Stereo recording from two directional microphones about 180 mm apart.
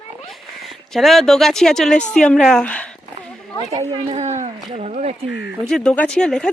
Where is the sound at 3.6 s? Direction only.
35° right (ahead or behind).